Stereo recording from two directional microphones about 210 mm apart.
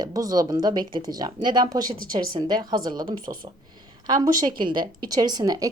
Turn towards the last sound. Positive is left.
turn(degrees=-15)  # may be behind; listen again after turning